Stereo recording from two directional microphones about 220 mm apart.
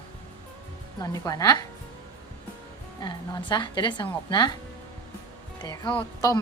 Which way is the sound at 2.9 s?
20° left (ahead or behind).